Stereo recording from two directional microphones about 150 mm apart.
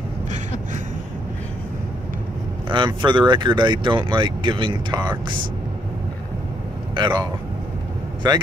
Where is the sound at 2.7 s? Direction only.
30° right (ahead or behind).